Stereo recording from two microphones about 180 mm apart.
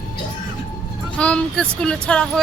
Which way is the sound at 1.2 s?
5° left (ahead or behind).